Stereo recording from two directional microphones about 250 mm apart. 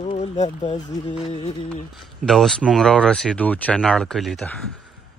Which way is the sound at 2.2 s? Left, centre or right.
Centre.